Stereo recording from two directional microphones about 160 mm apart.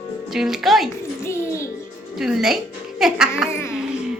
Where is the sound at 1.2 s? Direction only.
15° left (ahead or behind).